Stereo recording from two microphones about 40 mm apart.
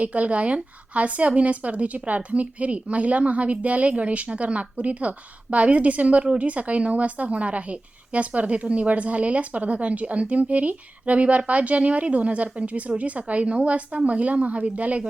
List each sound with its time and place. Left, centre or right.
0.0 s a woman's voice: right